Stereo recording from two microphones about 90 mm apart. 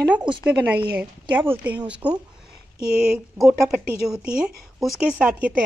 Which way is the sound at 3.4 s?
Centre (ahead or behind).